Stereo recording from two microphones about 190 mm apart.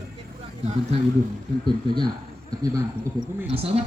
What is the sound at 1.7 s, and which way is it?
Speech, 25° right (ahead or behind).